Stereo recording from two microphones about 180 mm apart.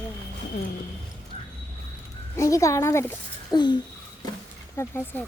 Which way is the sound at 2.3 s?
15° left (ahead or behind).